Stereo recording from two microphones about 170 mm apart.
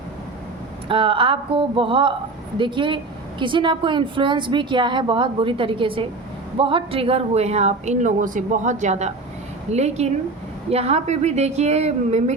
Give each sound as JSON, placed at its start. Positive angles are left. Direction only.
{"t": 0.9, "sound": "speech", "side_deg": -30}